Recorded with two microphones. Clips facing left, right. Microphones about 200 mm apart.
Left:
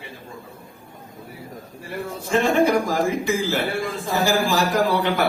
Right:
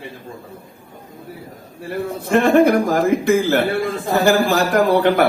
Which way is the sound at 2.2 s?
60° right (ahead or behind).